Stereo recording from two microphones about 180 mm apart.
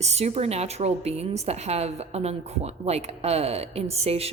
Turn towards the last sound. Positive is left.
turn(degrees=-35)  # may be behind; listen again after turning